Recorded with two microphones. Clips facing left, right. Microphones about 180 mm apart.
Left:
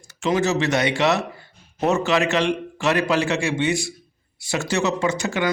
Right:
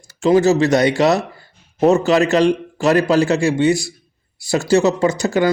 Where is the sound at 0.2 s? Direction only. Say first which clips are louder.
Right 8 dB; 35° right (ahead or behind).